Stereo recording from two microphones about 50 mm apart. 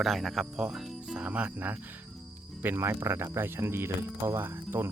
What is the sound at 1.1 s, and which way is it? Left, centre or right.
Speech, right.